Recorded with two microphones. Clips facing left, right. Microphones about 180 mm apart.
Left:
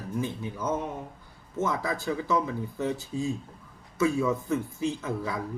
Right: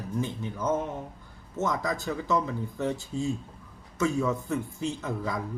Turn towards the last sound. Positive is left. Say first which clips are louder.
# left 1 dB
turn(degrees=5)  # may be behind; listen again after turning